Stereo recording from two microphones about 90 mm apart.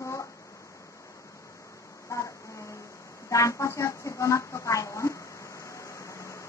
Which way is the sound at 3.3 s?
35° left (ahead or behind).